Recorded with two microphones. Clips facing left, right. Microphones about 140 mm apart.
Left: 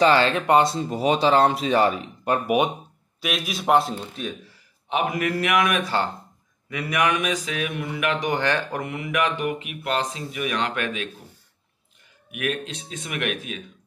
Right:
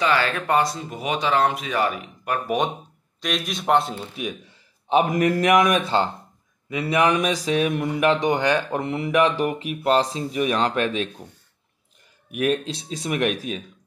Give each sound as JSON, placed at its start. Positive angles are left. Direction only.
{"t": 0.0, "sound": "speech", "side_deg": 30}
{"t": 2.4, "sound": "a man's voice", "side_deg": 10}
{"t": 4.8, "sound": "speech", "side_deg": -40}
{"t": 6.7, "sound": "speech", "side_deg": -25}
{"t": 8.8, "sound": "speech", "side_deg": -30}
{"t": 12.3, "sound": "speech", "side_deg": -35}